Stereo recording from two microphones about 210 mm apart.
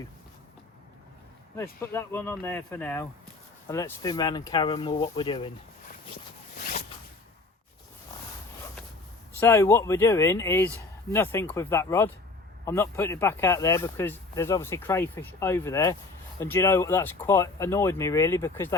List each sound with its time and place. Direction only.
1.5 s speech: 10° left (ahead or behind)
6.6 s zipper: 45° left (ahead or behind)
9.4 s speech: 15° left (ahead or behind)